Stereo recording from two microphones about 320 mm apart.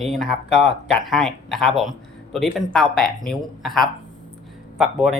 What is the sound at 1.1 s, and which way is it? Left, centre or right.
Speech, centre.